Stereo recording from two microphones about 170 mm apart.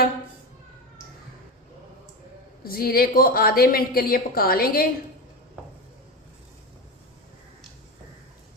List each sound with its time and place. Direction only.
2.6 s a woman's voice: 60° left (ahead or behind)